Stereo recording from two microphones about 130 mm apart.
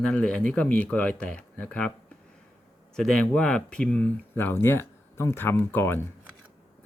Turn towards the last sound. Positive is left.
turn(degrees=15)  # may be behind; listen again after turning